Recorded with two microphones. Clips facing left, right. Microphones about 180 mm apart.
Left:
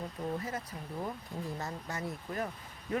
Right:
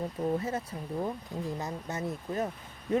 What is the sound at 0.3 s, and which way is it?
Speech, 25° right (ahead or behind).